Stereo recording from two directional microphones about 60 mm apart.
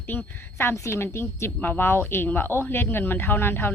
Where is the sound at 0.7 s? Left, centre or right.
Left.